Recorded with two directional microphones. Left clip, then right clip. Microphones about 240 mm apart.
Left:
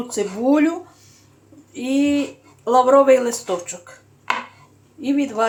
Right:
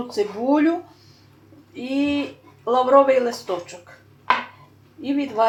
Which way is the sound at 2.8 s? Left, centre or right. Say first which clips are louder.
Left 1 dB; left.